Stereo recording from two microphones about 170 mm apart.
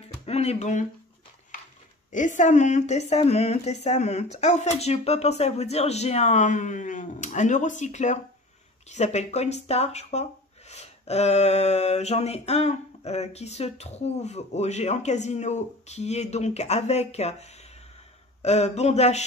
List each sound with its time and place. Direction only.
0.2 s speech: 40° left (ahead or behind)
2.1 s speech: 50° left (ahead or behind)